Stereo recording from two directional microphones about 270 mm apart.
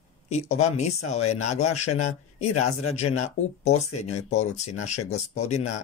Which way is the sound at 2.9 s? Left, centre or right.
Left.